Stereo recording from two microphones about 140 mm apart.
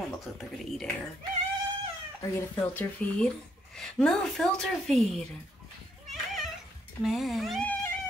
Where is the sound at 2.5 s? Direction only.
10° left (ahead or behind).